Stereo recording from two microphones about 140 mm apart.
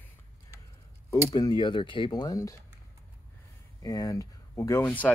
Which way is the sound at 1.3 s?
25° left (ahead or behind).